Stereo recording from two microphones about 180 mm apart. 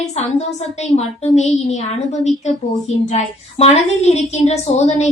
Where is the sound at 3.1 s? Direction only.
35° left (ahead or behind).